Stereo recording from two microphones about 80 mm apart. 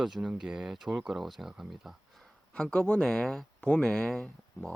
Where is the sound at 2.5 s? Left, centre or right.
Centre.